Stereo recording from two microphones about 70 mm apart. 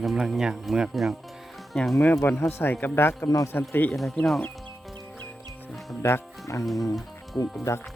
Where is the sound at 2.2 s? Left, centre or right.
Left.